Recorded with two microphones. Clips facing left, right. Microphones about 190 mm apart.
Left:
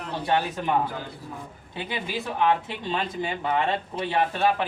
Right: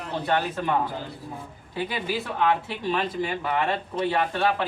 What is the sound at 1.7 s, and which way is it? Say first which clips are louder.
Speech: right 3 dB; 20° left (ahead or behind).